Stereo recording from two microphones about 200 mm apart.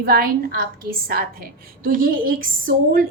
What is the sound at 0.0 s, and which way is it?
A woman's voice, 50° right (ahead or behind).